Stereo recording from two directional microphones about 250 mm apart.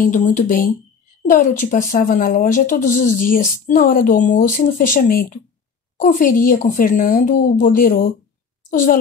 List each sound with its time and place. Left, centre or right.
0.0 s a child's voice: left